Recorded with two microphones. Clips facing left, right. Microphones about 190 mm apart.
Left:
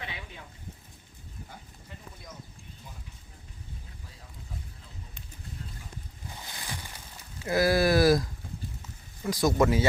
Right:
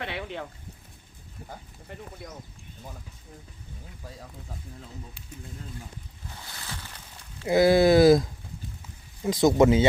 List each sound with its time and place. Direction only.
0.0 s a sound: 70° right (ahead or behind)
6.4 s boat: 15° left (ahead or behind)
7.4 s speech: 20° right (ahead or behind)